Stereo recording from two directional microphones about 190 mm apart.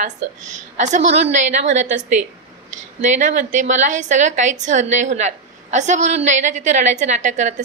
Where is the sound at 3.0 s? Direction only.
40° right (ahead or behind).